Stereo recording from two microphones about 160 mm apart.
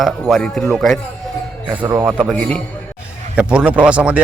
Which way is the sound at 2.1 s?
5° right (ahead or behind).